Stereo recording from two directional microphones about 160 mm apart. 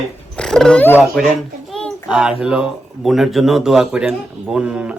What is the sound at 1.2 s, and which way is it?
A child's voice, centre (ahead or behind).